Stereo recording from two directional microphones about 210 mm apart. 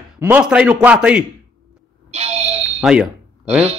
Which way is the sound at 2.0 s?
30° right (ahead or behind).